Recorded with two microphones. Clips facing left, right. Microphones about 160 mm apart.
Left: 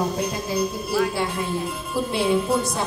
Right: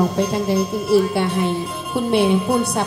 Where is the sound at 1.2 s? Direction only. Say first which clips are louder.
Right 5 dB; 70° right (ahead or behind).